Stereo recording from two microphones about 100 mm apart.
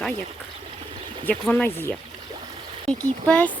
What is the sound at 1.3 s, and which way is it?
Speech, 20° left (ahead or behind).